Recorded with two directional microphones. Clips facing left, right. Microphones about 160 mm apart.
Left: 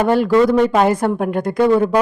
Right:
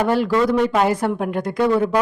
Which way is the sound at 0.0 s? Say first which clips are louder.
Left 4 dB; 50° left (ahead or behind).